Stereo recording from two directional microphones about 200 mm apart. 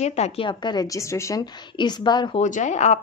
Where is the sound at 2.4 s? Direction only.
35° left (ahead or behind).